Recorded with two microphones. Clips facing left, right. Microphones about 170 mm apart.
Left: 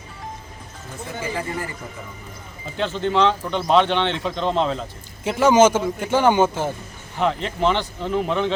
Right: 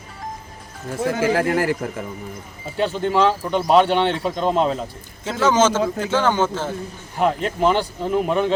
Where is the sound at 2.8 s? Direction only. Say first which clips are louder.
Right 1 dB; 10° right (ahead or behind).